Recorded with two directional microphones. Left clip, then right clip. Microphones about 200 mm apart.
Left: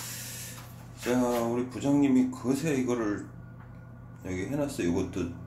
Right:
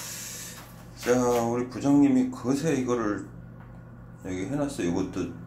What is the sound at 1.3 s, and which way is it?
Speech, 10° left (ahead or behind).